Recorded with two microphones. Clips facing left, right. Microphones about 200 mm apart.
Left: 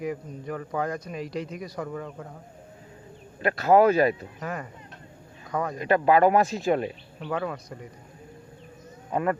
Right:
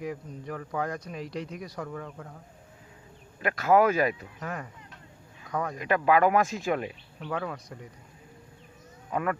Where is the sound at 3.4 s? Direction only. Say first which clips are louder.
Left 3 dB; 35° left (ahead or behind).